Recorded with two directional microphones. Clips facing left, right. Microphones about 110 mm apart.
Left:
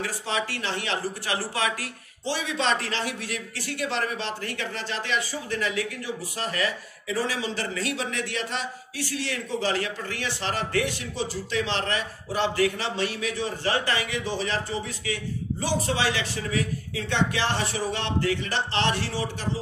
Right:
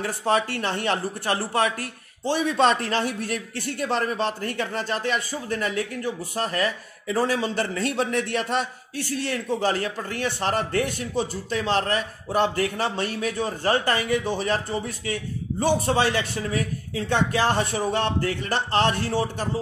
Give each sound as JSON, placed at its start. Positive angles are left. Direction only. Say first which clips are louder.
{"t": 0.0, "sound": "a man's voice", "louder": "right 6 dB", "side_deg": -50}